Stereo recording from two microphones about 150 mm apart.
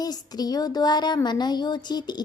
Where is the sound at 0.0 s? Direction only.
25° left (ahead or behind).